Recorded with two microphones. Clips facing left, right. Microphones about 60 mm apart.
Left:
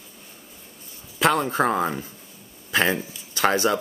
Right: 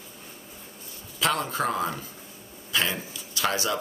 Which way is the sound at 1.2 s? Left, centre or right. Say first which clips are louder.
Left 6 dB; left.